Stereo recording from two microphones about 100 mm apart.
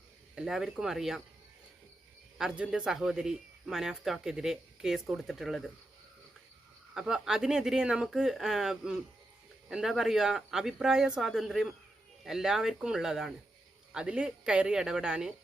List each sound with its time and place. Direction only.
0.3 s speech: 5° right (ahead or behind)
2.4 s speech: 5° right (ahead or behind)
6.9 s speech: 5° right (ahead or behind)